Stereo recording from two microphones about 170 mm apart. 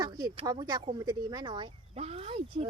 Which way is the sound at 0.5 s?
25° right (ahead or behind).